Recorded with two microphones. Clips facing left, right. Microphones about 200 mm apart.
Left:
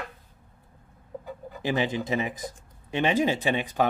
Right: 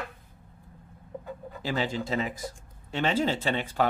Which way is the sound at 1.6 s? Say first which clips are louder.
Left 3 dB; 20° left (ahead or behind).